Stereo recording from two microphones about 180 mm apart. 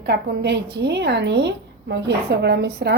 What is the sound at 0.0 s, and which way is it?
Speech, 65° right (ahead or behind).